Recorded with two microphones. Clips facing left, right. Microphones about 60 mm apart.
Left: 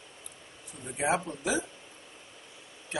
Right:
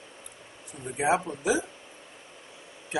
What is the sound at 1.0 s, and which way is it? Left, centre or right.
Speech, centre.